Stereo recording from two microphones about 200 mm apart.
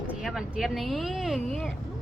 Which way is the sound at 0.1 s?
5° right (ahead or behind).